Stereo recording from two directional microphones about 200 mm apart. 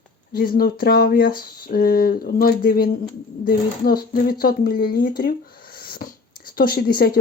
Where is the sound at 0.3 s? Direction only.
50° left (ahead or behind).